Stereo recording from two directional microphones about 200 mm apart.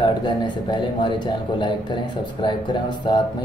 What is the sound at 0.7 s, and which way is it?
A man's voice, 25° left (ahead or behind).